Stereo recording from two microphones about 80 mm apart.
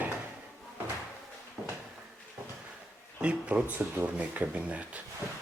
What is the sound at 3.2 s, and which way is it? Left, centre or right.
Speech, centre.